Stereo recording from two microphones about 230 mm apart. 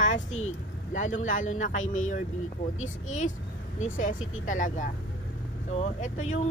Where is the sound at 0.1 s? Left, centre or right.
Left.